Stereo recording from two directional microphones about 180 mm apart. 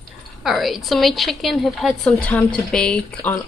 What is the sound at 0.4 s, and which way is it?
A woman's voice, centre (ahead or behind).